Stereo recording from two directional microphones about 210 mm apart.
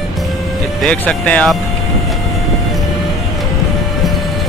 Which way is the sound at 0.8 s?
5° left (ahead or behind).